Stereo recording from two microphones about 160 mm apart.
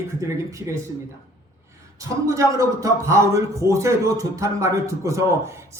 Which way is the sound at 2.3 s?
20° right (ahead or behind).